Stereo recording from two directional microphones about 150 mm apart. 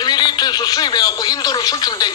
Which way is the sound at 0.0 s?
30° left (ahead or behind).